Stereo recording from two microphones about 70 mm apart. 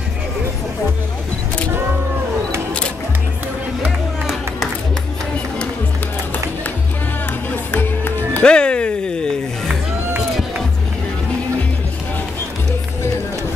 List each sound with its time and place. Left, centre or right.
7.7 s music: left
8.5 s music: centre